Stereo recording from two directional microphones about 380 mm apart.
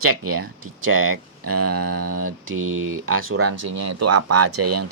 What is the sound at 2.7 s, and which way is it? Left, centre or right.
Speech, right.